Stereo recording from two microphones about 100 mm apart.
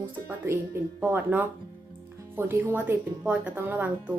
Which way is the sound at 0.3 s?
25° right (ahead or behind).